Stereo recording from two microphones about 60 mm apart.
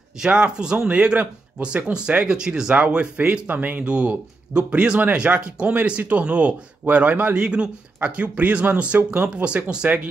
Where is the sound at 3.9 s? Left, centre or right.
Centre.